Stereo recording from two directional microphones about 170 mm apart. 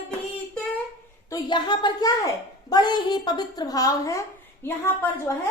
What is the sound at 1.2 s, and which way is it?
A woman's voice, 25° left (ahead or behind).